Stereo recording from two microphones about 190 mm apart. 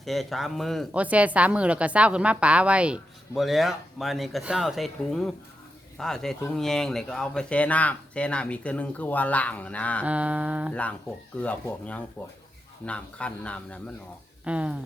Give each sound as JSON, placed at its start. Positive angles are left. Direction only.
{"t": 0.0, "sound": "speech", "side_deg": 0}
{"t": 10.1, "sound": "humming", "side_deg": -5}
{"t": 10.7, "sound": "speech", "side_deg": 5}
{"t": 14.4, "sound": "humming", "side_deg": -5}